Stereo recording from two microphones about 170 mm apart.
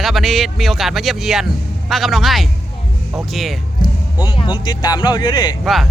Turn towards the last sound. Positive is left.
turn(degrees=0)  # may be behind; listen again after turning